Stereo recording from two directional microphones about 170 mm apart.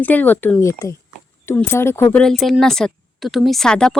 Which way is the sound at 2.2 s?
Centre (ahead or behind).